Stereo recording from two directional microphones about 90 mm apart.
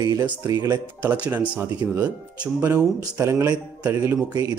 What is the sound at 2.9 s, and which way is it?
Speech, 35° right (ahead or behind).